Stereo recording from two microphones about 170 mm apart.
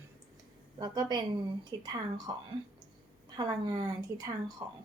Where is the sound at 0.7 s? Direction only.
25° right (ahead or behind).